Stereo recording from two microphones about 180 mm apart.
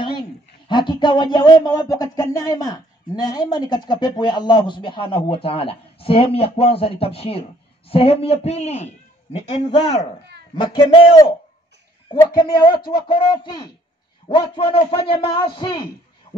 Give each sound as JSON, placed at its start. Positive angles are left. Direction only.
{"t": 0.7, "sound": "a man's voice", "side_deg": 25}